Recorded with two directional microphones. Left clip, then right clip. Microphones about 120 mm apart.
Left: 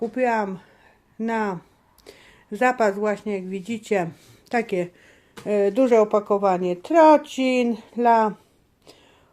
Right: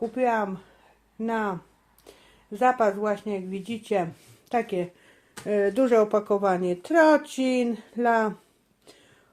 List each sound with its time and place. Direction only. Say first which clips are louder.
0.0 s a woman's voice: left 2 dB; 25° left (ahead or behind)